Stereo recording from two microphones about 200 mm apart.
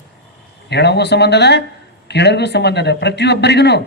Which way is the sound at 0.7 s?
55° left (ahead or behind).